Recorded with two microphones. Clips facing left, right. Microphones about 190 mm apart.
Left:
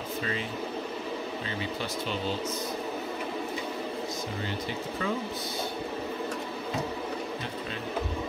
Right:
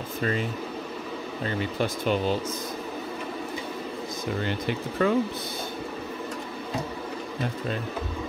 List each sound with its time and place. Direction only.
0.2 s speech: 45° right (ahead or behind)
1.6 s speech: 55° right (ahead or behind)
4.5 s speech: 65° right (ahead or behind)